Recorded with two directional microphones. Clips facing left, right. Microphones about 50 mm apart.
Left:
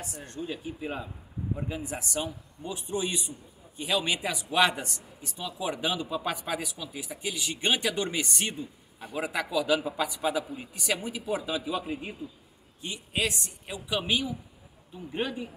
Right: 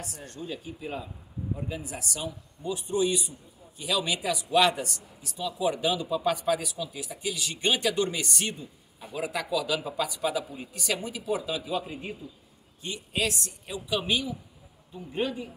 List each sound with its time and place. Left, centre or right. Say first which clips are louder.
0.1 s a man's voice: left 1 dB; centre